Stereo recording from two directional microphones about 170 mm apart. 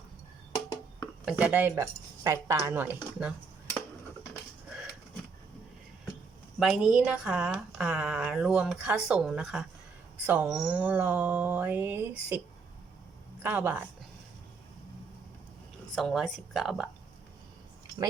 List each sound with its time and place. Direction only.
0.5 s a sound: 20° left (ahead or behind)
1.2 s speech: 5° right (ahead or behind)
6.6 s speech: 5° right (ahead or behind)
13.4 s speech: 10° right (ahead or behind)
16.0 s speech: centre (ahead or behind)